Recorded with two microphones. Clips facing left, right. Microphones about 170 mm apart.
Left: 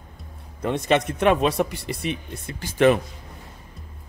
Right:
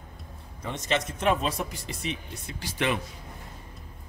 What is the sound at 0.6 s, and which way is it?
Speech, 60° left (ahead or behind).